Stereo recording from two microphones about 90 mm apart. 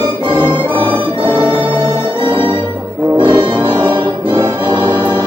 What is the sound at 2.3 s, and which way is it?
Music, 65° right (ahead or behind).